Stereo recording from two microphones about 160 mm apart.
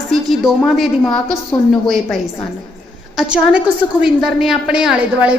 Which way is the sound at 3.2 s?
5° right (ahead or behind).